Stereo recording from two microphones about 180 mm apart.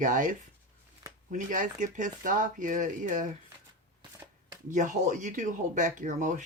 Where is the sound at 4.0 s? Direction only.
20° right (ahead or behind).